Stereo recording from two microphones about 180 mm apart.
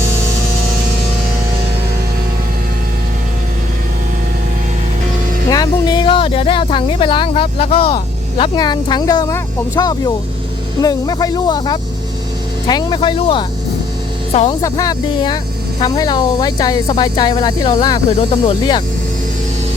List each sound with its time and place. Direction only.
5.5 s speech: 25° left (ahead or behind)
14.6 s speech: 20° left (ahead or behind)